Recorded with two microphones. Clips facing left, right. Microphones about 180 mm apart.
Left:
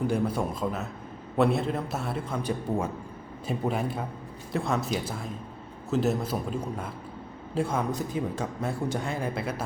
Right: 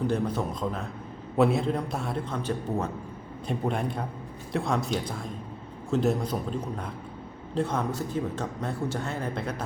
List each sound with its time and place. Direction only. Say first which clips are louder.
0.1 s a man's voice: left 1 dB; 10° left (ahead or behind)